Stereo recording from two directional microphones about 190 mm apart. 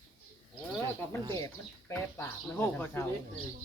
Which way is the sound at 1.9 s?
10° left (ahead or behind).